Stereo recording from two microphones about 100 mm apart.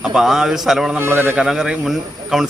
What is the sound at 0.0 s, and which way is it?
Speech, 5° right (ahead or behind).